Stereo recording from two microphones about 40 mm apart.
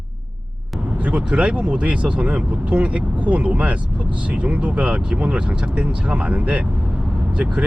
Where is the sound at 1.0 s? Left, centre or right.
Right.